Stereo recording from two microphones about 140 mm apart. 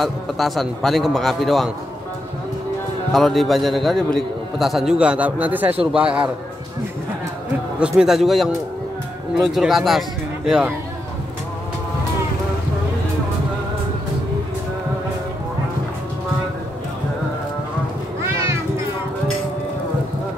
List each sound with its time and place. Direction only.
0.0 s a man's voice: centre (ahead or behind)
3.1 s a man's voice: centre (ahead or behind)
8.0 s a man's voice: centre (ahead or behind)
18.2 s cat: 20° right (ahead or behind)